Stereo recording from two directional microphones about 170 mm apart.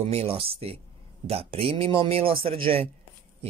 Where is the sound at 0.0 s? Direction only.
35° right (ahead or behind).